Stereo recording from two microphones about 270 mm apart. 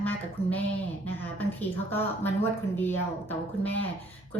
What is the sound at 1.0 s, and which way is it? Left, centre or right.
A woman's voice, centre.